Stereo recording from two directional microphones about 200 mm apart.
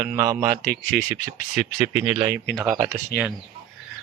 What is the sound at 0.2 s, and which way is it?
Speech, 20° right (ahead or behind).